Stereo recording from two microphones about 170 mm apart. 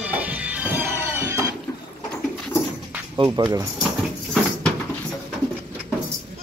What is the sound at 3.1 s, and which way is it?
Speech, 25° right (ahead or behind).